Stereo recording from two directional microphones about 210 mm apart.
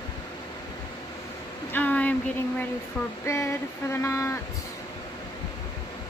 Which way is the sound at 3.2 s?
15° left (ahead or behind).